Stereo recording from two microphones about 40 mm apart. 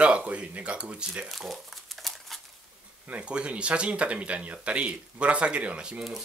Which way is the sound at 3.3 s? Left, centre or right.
Right.